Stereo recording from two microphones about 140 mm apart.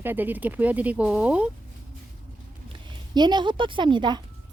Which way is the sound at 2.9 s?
30° right (ahead or behind).